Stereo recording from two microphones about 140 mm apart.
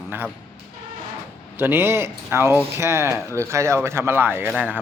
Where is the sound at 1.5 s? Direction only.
15° right (ahead or behind).